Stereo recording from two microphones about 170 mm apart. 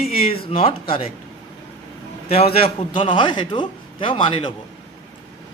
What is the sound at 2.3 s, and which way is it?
A man's voice, 35° left (ahead or behind).